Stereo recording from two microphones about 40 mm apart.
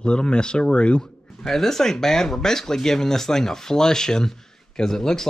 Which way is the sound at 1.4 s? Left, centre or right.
Centre.